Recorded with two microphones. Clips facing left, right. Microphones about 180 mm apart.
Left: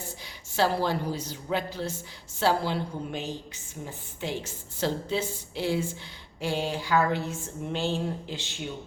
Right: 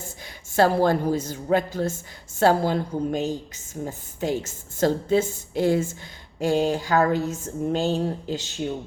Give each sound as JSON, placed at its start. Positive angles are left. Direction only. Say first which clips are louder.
{"t": 0.5, "sound": "a woman's voice", "louder": "right 7 dB", "side_deg": -50}